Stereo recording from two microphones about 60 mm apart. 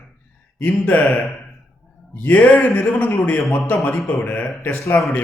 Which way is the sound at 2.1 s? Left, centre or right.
Left.